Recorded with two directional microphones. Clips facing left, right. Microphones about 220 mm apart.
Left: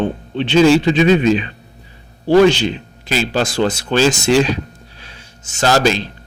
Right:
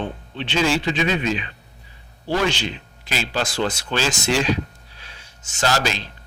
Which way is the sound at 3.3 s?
45° left (ahead or behind).